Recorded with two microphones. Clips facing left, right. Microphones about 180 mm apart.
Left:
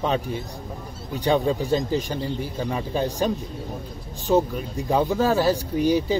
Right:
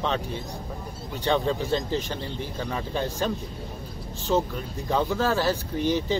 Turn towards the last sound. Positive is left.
turn(degrees=10)  # may be behind; listen again after turning